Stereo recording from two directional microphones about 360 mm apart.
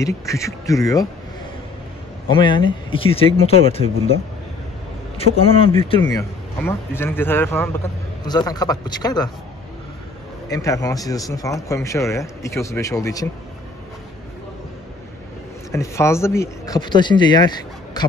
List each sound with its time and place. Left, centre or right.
0.0 s a man's voice: centre
2.2 s a man's voice: centre
10.5 s a man's voice: centre
15.7 s a man's voice: centre